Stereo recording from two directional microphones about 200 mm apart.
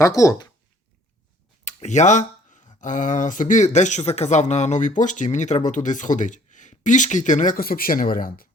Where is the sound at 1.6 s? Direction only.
35° left (ahead or behind).